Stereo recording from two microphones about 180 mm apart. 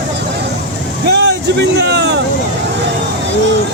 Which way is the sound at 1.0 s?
70° right (ahead or behind).